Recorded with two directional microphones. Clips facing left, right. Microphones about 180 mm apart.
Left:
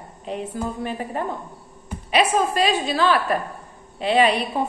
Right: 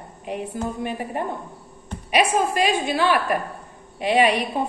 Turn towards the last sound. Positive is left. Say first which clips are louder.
# even
turn(degrees=-15)  # may be behind; listen again after turning